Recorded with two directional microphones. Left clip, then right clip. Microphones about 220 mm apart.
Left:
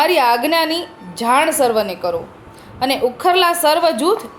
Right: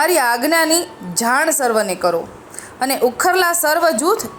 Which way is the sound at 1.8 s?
60° right (ahead or behind).